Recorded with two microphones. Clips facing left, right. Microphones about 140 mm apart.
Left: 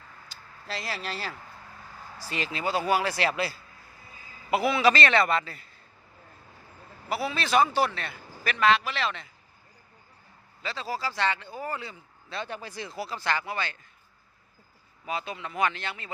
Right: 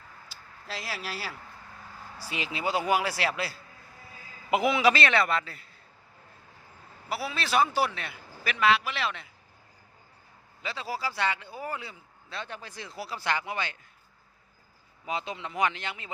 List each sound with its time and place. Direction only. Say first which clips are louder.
0.3 s speech: left 3 dB; 5° right (ahead or behind)
4.5 s a man's voice: left 1 dB; 15° right (ahead or behind); by 5.6 s centre (ahead or behind)
7.1 s speech: left 3 dB; centre (ahead or behind)
10.6 s speech: left 1 dB; 10° right (ahead or behind)
15.0 s speech: even; 20° right (ahead or behind)